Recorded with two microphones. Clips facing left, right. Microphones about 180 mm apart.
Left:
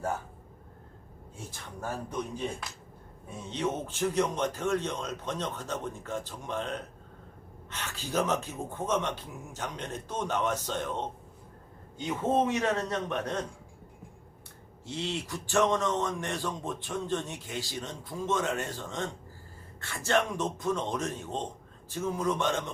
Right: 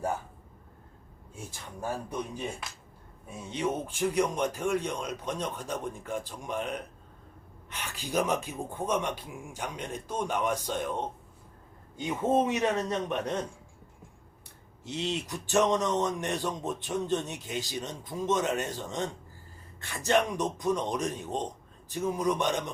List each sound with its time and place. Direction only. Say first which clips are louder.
1.5 s a man's voice: right 2 dB; 10° right (ahead or behind)
14.8 s a man's voice: right 2 dB; 20° right (ahead or behind)